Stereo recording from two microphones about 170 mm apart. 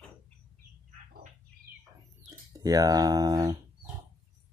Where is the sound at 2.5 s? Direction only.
20° right (ahead or behind).